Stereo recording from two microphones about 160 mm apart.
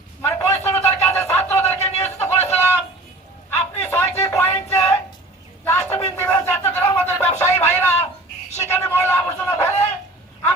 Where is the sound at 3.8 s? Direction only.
15° left (ahead or behind).